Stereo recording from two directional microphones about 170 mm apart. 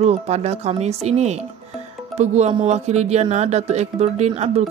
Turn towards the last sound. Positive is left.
turn(degrees=-40)  # may be behind; listen again after turning